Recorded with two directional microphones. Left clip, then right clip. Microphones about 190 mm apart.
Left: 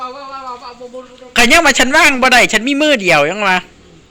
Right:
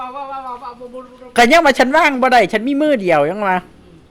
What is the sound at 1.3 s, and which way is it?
A man's voice, 10° right (ahead or behind).